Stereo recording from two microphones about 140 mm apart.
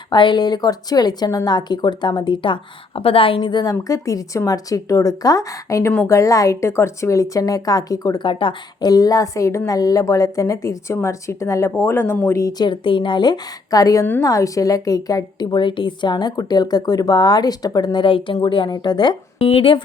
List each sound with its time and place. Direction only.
0.1 s a woman's voice: 35° left (ahead or behind)